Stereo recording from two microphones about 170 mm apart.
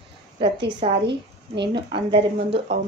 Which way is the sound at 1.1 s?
90° right.